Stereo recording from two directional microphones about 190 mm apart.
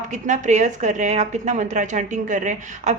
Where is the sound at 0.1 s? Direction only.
40° right (ahead or behind).